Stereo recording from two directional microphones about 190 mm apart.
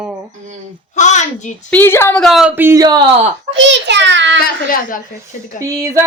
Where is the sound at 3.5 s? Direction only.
70° right (ahead or behind).